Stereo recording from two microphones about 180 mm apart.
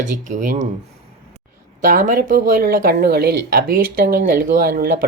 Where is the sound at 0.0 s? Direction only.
45° right (ahead or behind).